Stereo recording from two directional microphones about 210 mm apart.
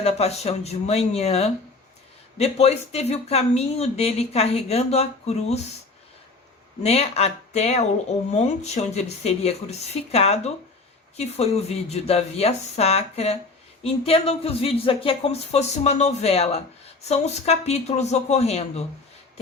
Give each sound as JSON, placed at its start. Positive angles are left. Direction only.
{"t": 0.0, "sound": "speech", "side_deg": 30}
{"t": 6.8, "sound": "speech", "side_deg": 30}